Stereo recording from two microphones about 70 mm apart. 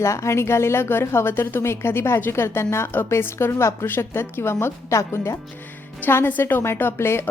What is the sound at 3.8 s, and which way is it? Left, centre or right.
Speech, left.